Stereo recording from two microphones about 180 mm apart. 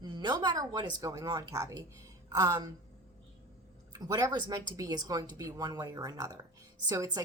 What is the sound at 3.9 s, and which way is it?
Speech, 25° right (ahead or behind).